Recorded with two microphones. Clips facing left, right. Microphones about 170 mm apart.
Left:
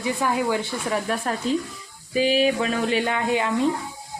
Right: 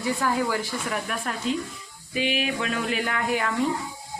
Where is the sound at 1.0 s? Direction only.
35° left (ahead or behind).